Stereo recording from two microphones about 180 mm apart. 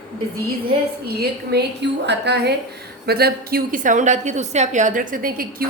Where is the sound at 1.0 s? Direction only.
65° right (ahead or behind).